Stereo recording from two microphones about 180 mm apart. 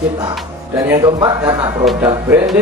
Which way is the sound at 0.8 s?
20° right (ahead or behind).